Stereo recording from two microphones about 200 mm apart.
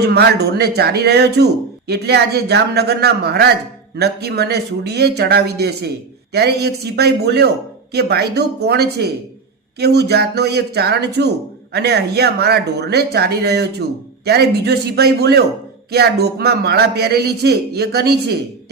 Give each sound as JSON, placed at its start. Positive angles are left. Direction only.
{"t": 0.0, "sound": "a man's voice", "side_deg": -55}